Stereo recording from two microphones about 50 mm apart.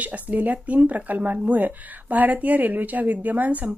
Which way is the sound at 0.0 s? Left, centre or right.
Right.